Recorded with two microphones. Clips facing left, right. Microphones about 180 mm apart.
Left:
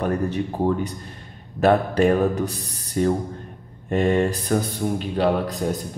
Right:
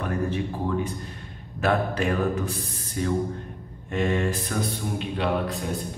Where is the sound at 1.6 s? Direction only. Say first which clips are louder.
Left 7 dB; 35° left (ahead or behind).